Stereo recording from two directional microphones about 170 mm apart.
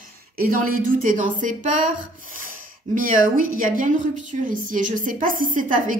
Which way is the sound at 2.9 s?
55° right (ahead or behind).